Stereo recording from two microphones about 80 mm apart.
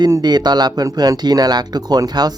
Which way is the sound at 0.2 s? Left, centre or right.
Right.